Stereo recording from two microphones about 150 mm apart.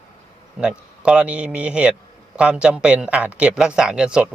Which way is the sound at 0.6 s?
5° right (ahead or behind).